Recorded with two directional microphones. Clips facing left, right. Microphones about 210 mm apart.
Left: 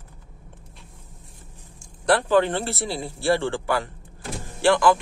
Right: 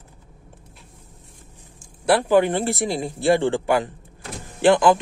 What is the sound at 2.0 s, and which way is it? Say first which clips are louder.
Speech: right 2 dB; 10° right (ahead or behind).